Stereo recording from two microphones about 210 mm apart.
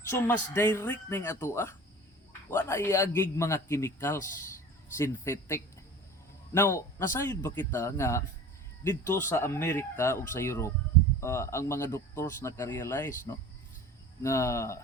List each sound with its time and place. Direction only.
0.1 s speech: 10° left (ahead or behind)